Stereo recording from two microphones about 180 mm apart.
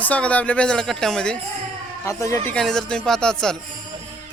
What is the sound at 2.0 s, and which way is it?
Speech, 15° left (ahead or behind).